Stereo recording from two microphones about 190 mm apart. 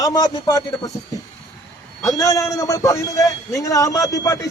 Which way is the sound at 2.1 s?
20° left (ahead or behind).